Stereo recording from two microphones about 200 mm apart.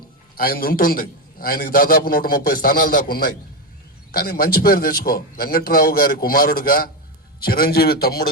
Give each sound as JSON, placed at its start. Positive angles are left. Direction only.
{"t": 0.3, "sound": "a man's voice", "side_deg": 50}